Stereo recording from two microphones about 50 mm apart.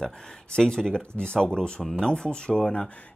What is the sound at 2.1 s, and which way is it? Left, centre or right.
Speech, centre.